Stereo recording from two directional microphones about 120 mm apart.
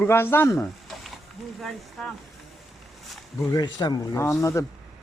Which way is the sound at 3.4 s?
35° left (ahead or behind).